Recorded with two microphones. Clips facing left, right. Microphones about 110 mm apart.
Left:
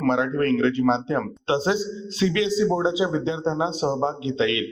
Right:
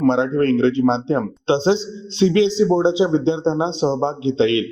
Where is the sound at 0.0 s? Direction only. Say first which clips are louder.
Right 5 dB; 30° right (ahead or behind).